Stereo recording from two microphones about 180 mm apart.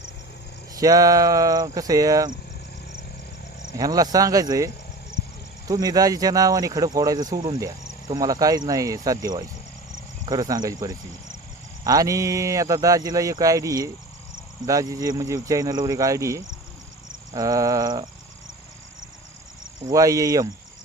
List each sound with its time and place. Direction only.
0.8 s cricket: 20° right (ahead or behind)
3.7 s cricket: 20° right (ahead or behind)
19.9 s cricket: 20° right (ahead or behind)